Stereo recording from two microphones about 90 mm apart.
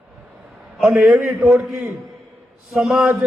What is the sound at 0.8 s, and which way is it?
A man's voice, 5° right (ahead or behind).